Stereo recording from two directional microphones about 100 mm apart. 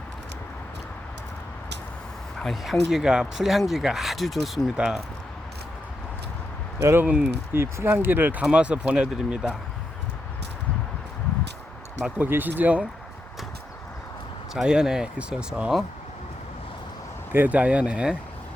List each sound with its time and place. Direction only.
2.4 s speech: centre (ahead or behind)
6.8 s speech: 20° right (ahead or behind)
12.1 s speech: 20° right (ahead or behind)
14.5 s speech: 5° right (ahead or behind)
17.3 s speech: 15° right (ahead or behind)